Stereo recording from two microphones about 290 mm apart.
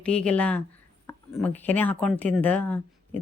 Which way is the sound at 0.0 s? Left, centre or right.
Centre.